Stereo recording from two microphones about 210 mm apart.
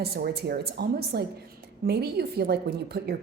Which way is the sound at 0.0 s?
50° right (ahead or behind).